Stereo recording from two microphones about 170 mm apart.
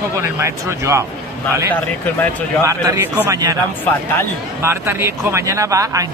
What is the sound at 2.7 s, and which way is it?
Speech, 15° right (ahead or behind).